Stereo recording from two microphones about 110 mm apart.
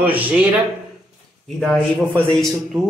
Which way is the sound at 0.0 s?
15° right (ahead or behind).